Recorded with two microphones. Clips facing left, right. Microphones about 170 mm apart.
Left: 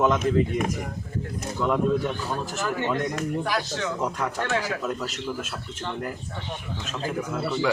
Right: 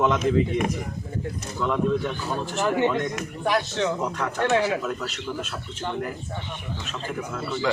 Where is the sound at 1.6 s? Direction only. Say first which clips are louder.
Even; 5° left (ahead or behind).